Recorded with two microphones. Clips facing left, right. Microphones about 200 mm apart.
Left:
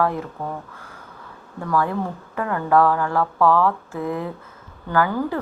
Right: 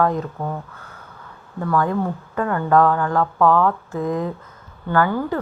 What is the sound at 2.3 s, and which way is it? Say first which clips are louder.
Speech: right 1 dB; 15° left (ahead or behind).